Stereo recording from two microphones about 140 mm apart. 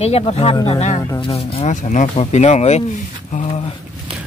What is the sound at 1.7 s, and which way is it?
Speech, 65° left (ahead or behind).